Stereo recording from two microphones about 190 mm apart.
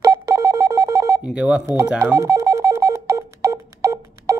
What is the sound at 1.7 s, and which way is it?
Telephone, 10° right (ahead or behind).